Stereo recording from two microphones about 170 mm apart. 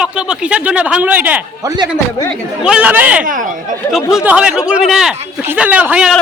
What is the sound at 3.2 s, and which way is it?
Speech, 50° right (ahead or behind).